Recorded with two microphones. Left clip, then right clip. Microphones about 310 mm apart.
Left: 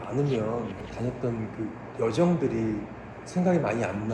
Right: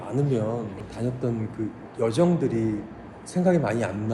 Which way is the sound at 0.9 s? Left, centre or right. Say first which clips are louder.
Right 3 dB; right.